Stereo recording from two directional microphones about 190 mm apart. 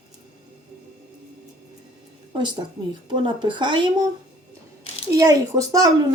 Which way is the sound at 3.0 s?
25° right (ahead or behind).